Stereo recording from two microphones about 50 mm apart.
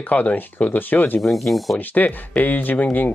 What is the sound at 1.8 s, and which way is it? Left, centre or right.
Speech, left.